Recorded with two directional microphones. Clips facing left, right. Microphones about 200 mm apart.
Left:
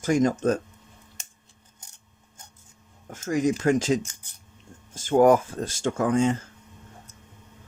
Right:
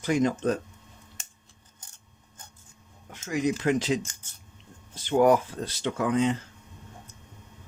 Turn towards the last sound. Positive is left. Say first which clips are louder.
# left 3 dB
turn(degrees=45)  # may be behind; listen again after turning